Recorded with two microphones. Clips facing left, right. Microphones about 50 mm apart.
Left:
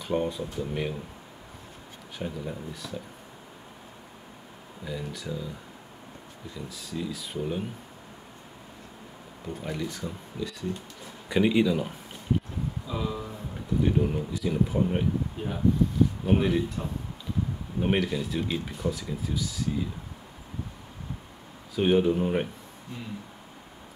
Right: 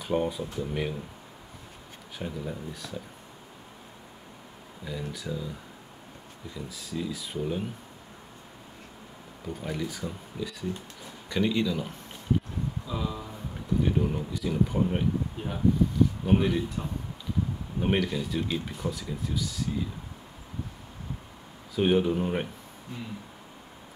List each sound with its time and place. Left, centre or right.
0.0 s speech: centre
2.1 s speech: centre
4.8 s speech: centre
6.5 s speech: centre
9.5 s speech: centre
11.2 s speech: centre
12.8 s speech: centre
21.7 s speech: centre